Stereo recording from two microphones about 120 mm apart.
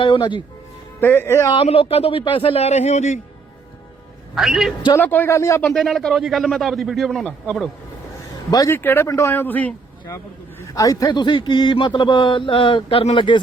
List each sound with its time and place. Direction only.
0.0 s a man's voice: 40° left (ahead or behind)
0.9 s speech: 20° left (ahead or behind)
1.6 s a man's voice: 55° left (ahead or behind); by 3.2 s 75° left (ahead or behind)
4.4 s a man's voice: centre (ahead or behind)
4.9 s speech: 15° left (ahead or behind)
5.7 s a man's voice: 5° left (ahead or behind)
8.4 s speech: 30° left (ahead or behind)
8.7 s speech: 15° left (ahead or behind)
10.6 s a man's voice: 30° left (ahead or behind)